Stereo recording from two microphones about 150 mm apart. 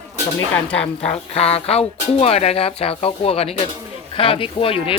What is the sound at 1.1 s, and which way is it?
Speech, 40° left (ahead or behind).